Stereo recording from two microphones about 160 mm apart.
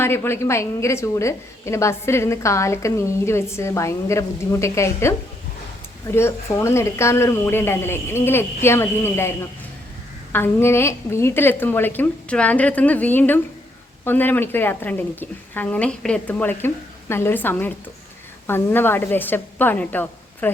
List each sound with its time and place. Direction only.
0.0 s a woman's voice: 15° left (ahead or behind)